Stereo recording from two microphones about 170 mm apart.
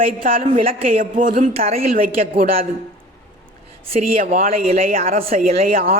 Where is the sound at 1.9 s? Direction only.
55° right (ahead or behind).